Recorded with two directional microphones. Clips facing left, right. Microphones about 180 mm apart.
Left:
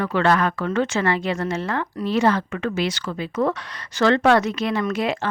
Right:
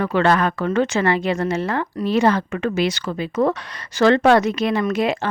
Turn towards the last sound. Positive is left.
turn(degrees=-15)  # may be behind; listen again after turning